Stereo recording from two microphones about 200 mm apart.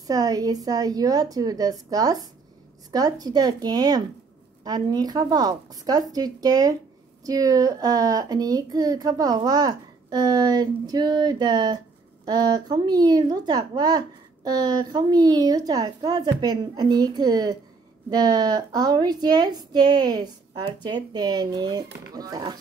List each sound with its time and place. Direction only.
0.0 s a woman's voice: 20° right (ahead or behind)